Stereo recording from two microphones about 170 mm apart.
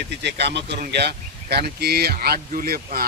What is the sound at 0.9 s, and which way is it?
Speech, 75° right (ahead or behind).